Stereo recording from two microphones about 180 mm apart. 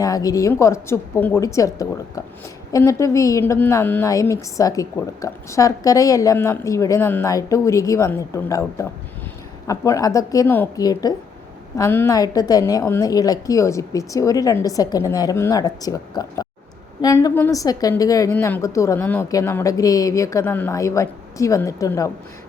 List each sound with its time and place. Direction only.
0.0 s a woman's voice: 20° left (ahead or behind)